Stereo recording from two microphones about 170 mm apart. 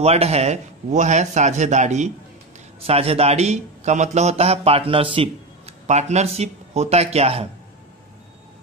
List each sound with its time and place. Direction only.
0.0 s a man's voice: 40° right (ahead or behind)